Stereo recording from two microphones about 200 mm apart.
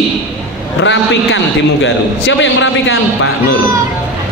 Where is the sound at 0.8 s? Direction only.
65° left (ahead or behind).